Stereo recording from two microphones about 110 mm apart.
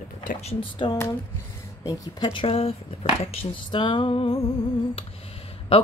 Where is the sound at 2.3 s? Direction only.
55° left (ahead or behind).